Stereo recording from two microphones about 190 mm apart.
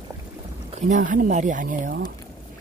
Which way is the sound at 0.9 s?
45° right (ahead or behind).